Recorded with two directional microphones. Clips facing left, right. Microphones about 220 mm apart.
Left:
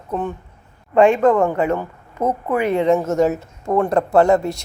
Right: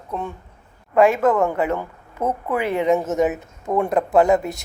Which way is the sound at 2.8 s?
20° right (ahead or behind).